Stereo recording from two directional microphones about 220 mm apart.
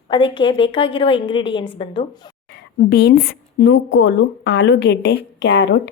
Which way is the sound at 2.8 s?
50° left (ahead or behind).